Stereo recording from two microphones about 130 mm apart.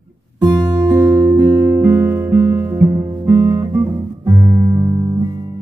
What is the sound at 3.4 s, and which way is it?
Guitar, 40° right (ahead or behind).